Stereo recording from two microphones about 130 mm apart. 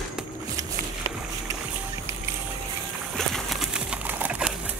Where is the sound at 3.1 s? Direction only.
Centre (ahead or behind).